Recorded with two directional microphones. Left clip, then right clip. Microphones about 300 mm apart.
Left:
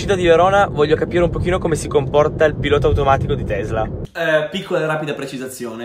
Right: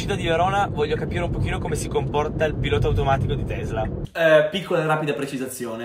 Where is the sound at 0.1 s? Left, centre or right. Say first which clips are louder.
Left 9 dB; left.